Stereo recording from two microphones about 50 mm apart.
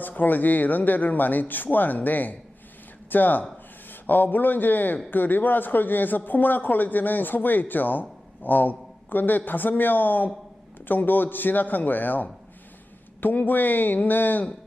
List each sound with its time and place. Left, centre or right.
0.2 s a man's voice: left